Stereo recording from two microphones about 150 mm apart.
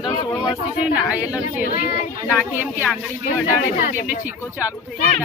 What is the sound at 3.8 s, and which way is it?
Speech, 65° left (ahead or behind).